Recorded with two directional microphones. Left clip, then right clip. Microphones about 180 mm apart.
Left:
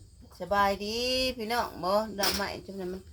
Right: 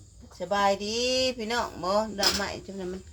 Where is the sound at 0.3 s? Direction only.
15° left (ahead or behind).